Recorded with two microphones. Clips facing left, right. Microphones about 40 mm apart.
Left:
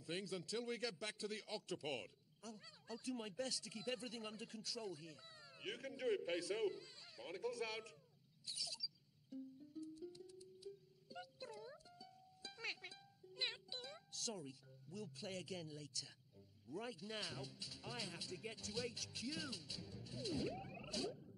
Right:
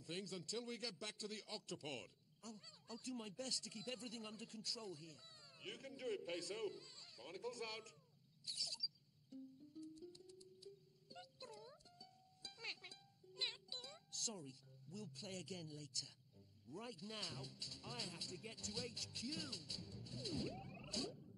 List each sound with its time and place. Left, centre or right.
0.0 s a man's voice: centre
8.5 s rodents: centre
9.3 s music: centre
16.7 s speech: centre